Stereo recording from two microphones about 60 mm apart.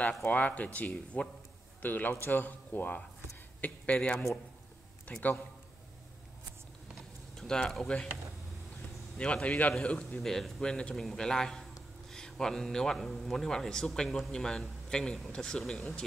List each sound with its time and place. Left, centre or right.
0.2 s a man's voice: left
5.1 s a man's voice: left
7.0 s a sound: centre
9.2 s a man's voice: left
10.2 s a man's voice: centre